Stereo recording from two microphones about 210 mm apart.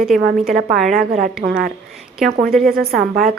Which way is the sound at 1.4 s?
45° right (ahead or behind).